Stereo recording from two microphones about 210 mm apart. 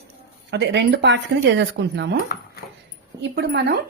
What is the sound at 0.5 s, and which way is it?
Speech, 55° right (ahead or behind).